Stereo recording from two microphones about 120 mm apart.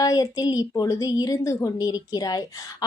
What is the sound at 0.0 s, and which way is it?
Speech, 30° left (ahead or behind).